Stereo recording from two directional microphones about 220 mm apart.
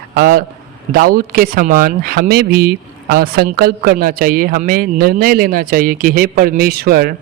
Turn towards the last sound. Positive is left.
turn(degrees=-45)  # may be behind; listen again after turning